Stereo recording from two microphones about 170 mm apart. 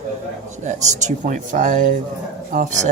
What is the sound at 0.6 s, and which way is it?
Speech, 45° right (ahead or behind).